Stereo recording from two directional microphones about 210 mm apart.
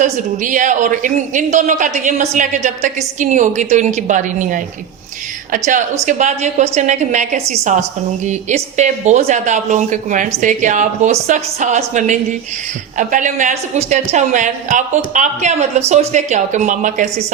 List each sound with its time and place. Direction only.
0.0 s a woman's voice: 35° right (ahead or behind)